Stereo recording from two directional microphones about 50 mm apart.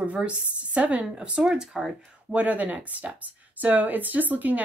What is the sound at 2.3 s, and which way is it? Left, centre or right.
Speech, right.